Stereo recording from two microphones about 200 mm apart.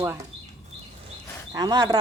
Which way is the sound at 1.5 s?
20° right (ahead or behind).